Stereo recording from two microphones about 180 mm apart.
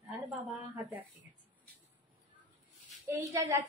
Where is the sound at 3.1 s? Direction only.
15° right (ahead or behind).